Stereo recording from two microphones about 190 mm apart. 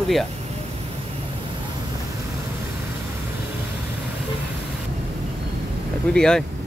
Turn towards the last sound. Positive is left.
turn(degrees=5)  # may be behind; listen again after turning